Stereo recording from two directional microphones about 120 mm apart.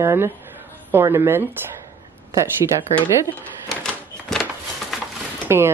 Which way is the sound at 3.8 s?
5° left (ahead or behind).